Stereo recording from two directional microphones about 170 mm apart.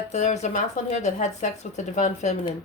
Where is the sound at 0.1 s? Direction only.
45° left (ahead or behind).